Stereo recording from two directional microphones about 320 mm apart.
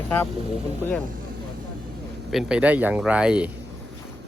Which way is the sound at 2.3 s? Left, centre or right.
Centre.